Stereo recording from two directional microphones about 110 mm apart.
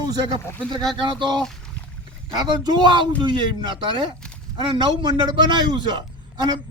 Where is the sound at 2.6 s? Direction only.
45° right (ahead or behind).